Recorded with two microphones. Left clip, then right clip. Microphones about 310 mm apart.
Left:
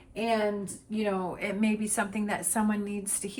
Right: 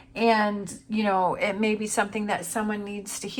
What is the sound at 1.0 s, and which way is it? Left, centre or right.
A woman's voice, centre.